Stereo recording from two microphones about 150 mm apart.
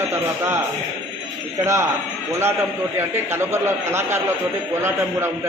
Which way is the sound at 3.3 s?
15° right (ahead or behind).